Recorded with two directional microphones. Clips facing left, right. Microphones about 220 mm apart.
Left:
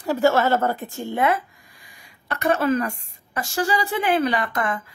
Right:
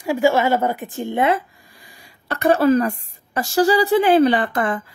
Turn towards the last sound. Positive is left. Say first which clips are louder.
# right 4 dB
turn(degrees=-30)  # may be behind; listen again after turning